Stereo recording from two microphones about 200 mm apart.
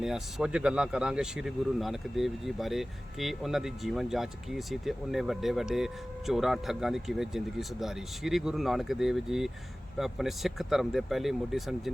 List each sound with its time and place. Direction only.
0.0 s speech: centre (ahead or behind)